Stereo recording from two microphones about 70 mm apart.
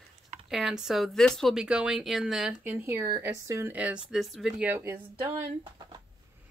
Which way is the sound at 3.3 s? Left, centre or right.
Right.